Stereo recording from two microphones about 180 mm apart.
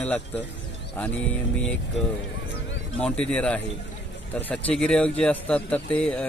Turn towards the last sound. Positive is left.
turn(degrees=5)  # may be behind; listen again after turning